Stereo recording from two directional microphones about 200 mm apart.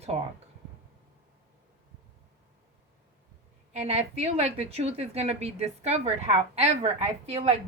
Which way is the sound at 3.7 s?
30° right (ahead or behind).